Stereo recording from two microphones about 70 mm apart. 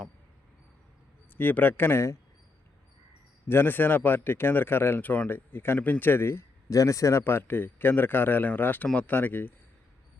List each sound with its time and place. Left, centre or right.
1.4 s speech: left
3.5 s speech: left
6.7 s speech: left